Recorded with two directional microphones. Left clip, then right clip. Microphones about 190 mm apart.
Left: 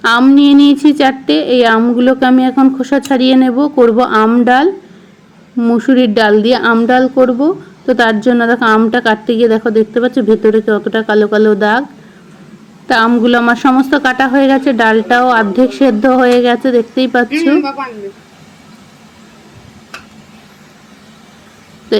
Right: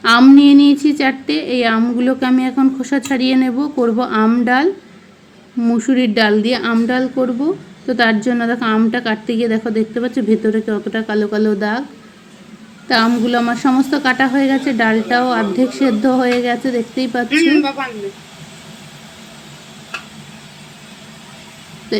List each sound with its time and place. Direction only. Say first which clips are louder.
0.0 s a woman's voice: left 1 dB; 10° left (ahead or behind)
12.9 s a woman's voice: left 5 dB; 15° left (ahead or behind)
17.2 s speech: left 1 dB; 5° left (ahead or behind)